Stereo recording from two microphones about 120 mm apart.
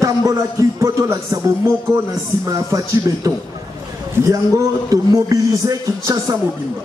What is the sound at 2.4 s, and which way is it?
A man's voice, 30° right (ahead or behind).